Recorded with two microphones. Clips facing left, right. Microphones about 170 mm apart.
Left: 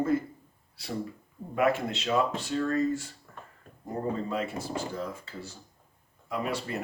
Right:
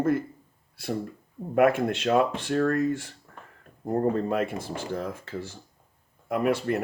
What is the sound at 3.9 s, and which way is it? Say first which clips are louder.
Speech: right 7 dB; 55° right (ahead or behind).